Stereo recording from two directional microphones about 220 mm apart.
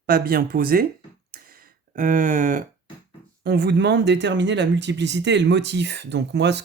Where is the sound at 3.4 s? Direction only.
50° right (ahead or behind).